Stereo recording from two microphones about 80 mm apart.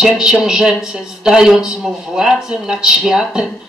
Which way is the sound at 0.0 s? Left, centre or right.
Centre.